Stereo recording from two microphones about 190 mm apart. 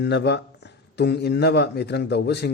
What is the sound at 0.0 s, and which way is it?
Speech, 65° left (ahead or behind).